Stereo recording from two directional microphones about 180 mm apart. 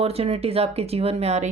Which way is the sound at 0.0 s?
35° right (ahead or behind).